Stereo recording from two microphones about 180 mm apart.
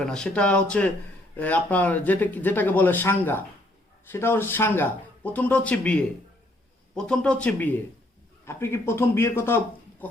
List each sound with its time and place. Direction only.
0.0 s speech: 5° left (ahead or behind)